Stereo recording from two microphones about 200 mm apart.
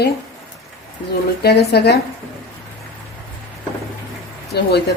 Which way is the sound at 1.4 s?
55° left (ahead or behind).